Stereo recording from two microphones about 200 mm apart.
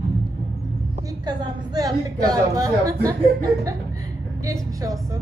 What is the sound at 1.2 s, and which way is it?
A woman's voice, 20° right (ahead or behind).